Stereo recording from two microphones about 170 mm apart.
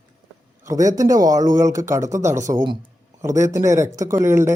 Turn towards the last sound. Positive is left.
turn(degrees=-15)  # may be behind; listen again after turning